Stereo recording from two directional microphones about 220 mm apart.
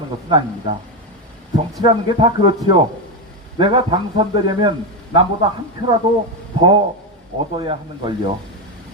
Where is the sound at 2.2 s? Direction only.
25° right (ahead or behind).